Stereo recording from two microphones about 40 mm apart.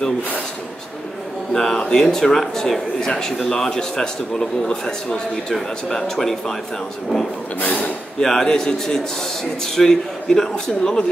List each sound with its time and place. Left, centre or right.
1.5 s speech: centre
5.9 s speech: centre
7.6 s speech: left
8.2 s speech: centre